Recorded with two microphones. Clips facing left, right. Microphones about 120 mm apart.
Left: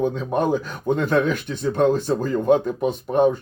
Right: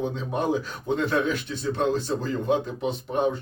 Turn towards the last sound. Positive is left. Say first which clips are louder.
# left 7 dB
turn(degrees=50)  # may be behind; listen again after turning